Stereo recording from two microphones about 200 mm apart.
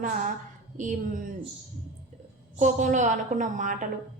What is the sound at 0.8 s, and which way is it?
Speech, 40° right (ahead or behind).